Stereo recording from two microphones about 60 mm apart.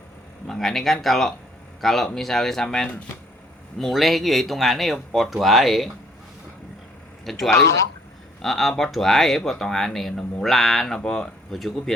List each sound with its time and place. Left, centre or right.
0.4 s speech: centre
7.3 s speech: centre
7.5 s speech: left
8.4 s speech: centre